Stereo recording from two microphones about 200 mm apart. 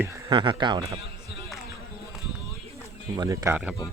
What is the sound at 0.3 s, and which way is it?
Speech, 25° right (ahead or behind).